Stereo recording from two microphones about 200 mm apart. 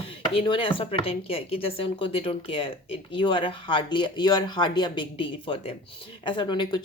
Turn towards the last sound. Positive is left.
turn(degrees=20)  # may be behind; listen again after turning